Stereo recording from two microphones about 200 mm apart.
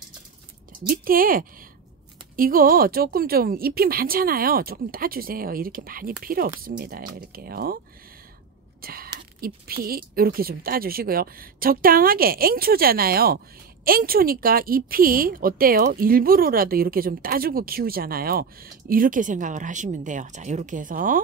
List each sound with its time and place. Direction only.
0.8 s speech: 45° right (ahead or behind)
8.8 s a sound: 50° right (ahead or behind)
9.4 s speech: 45° right (ahead or behind)